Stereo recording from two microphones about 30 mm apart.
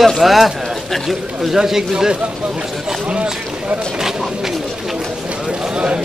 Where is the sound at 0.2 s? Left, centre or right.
Centre.